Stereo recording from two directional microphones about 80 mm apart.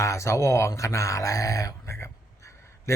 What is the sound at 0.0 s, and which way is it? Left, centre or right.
Speech, left.